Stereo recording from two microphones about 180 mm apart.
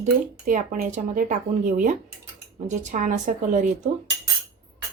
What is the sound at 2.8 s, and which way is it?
Speech, 45° right (ahead or behind).